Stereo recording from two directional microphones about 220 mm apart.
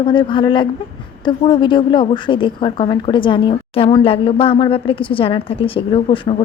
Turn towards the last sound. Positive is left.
turn(degrees=25)  # may be behind; listen again after turning